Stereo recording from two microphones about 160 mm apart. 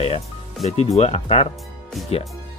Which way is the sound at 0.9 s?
40° left (ahead or behind).